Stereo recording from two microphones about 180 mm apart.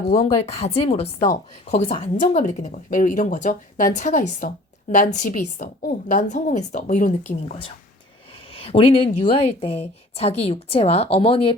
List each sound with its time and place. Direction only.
0.1 s speech: 35° left (ahead or behind)
7.4 s speech: 35° left (ahead or behind)